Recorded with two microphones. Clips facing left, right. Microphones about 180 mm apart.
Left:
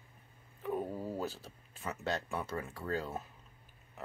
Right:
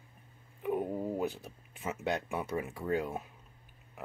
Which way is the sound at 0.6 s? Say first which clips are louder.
Right 4 dB; 15° right (ahead or behind).